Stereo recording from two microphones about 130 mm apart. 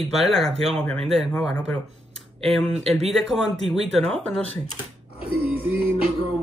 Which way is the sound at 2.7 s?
55° right (ahead or behind).